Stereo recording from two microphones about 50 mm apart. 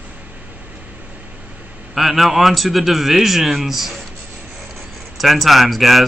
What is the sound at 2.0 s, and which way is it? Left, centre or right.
Speech, centre.